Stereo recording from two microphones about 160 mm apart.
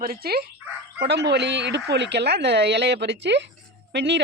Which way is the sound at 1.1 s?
90° right.